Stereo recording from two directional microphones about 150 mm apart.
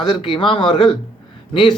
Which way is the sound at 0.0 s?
35° left (ahead or behind).